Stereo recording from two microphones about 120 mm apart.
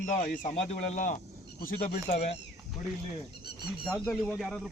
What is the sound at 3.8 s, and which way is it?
Speech, 5° left (ahead or behind).